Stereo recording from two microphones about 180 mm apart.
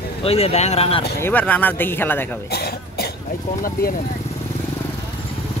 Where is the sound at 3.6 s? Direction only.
50° left (ahead or behind).